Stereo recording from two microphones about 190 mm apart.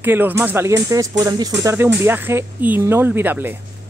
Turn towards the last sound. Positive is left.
turn(degrees=-10)  # may be behind; listen again after turning